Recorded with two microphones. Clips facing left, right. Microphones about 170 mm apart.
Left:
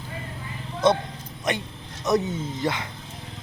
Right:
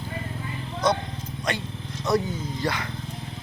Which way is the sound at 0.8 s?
25° left (ahead or behind).